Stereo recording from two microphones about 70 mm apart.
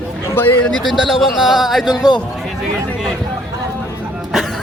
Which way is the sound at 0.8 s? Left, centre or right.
Centre.